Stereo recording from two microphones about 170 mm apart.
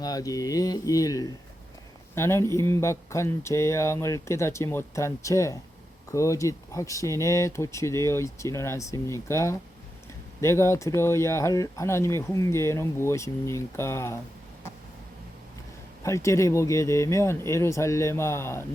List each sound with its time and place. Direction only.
0.0 s speech: 20° left (ahead or behind)
16.0 s speech: 15° left (ahead or behind)